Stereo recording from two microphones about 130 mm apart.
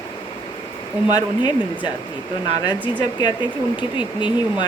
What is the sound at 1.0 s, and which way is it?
Speech, 35° left (ahead or behind).